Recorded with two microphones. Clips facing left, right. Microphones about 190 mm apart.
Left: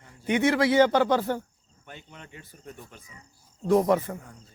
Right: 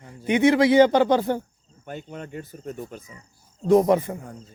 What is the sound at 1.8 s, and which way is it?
Speech, 45° right (ahead or behind).